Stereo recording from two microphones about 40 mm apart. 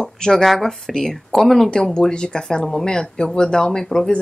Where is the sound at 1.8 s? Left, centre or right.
Centre.